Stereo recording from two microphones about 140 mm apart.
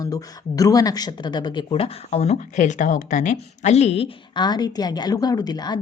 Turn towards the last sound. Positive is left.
turn(degrees=30)  # may be behind; listen again after turning